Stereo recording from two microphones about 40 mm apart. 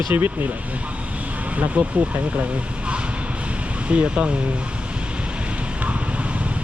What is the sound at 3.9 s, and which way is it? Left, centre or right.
Speech, right.